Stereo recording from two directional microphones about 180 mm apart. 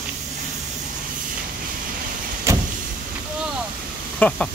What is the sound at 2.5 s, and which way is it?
Vehicle, 15° right (ahead or behind).